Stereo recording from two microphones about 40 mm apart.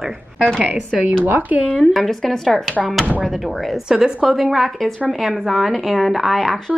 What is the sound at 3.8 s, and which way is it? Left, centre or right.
Speech, centre.